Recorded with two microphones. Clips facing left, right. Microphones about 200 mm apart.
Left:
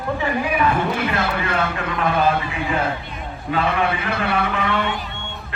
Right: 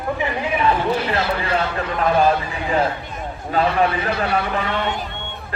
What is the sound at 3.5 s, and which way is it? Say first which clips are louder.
A man's voice: right 2 dB; 40° right (ahead or behind).